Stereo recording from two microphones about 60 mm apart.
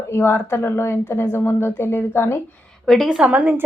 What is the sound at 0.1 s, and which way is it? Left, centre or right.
A woman's voice, left.